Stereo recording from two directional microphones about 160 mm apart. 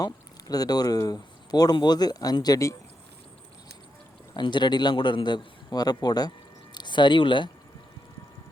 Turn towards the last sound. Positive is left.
turn(degrees=30)  # may be behind; listen again after turning